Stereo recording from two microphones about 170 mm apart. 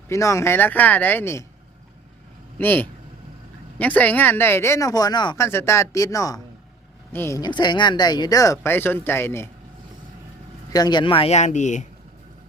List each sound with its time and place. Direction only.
0.1 s speech: 20° left (ahead or behind)
2.6 s speech: 10° left (ahead or behind)
5.5 s speech: 15° left (ahead or behind)
10.7 s speech: 25° left (ahead or behind); by 11.9 s 45° left (ahead or behind)